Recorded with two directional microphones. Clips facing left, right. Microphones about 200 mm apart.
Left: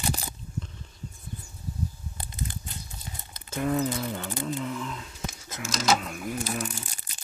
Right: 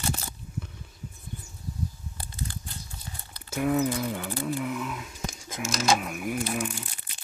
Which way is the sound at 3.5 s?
10° right (ahead or behind).